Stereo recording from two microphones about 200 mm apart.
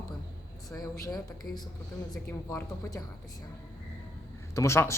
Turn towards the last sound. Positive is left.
turn(degrees=15)  # may be behind; listen again after turning